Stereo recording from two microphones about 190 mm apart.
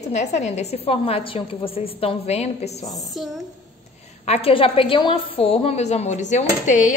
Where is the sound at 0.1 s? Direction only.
35° left (ahead or behind).